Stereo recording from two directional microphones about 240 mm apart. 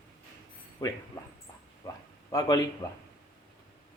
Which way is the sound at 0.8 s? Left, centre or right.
Centre.